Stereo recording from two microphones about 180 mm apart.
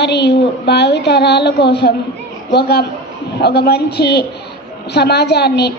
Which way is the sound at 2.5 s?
65° left (ahead or behind).